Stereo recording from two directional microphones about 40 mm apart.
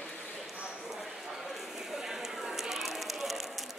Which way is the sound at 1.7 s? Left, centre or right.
Centre.